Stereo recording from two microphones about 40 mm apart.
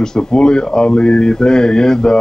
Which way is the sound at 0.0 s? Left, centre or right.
Centre.